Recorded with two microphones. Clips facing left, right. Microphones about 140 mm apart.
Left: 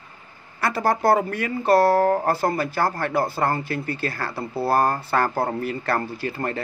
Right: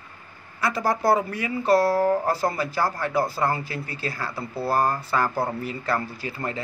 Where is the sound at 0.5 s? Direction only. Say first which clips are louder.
Left 2 dB; 60° left (ahead or behind).